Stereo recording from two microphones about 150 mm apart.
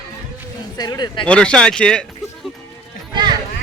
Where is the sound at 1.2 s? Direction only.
5° left (ahead or behind).